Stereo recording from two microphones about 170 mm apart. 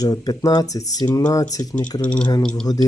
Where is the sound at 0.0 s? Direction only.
20° left (ahead or behind).